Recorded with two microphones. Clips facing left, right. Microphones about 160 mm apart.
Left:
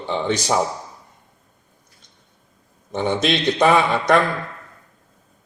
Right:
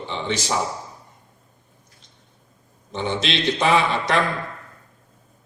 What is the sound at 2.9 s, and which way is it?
Speech, 50° left (ahead or behind).